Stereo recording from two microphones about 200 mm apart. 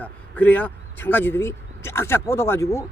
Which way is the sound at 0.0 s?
5° left (ahead or behind).